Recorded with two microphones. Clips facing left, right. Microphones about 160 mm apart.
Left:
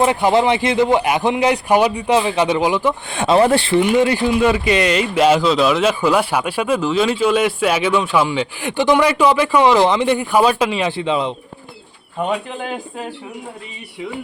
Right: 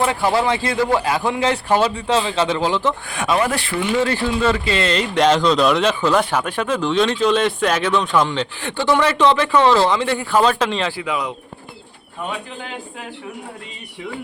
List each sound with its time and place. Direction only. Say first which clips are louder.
0.0 s speech: left 4 dB; 20° left (ahead or behind)
3.1 s speech: left 8 dB; 30° left (ahead or behind); by 10.9 s 10° left (ahead or behind)
10.9 s a man's voice: left 5 dB; 25° left (ahead or behind)